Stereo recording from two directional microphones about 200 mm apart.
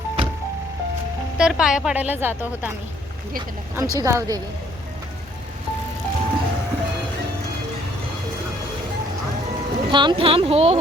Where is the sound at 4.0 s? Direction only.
15° right (ahead or behind).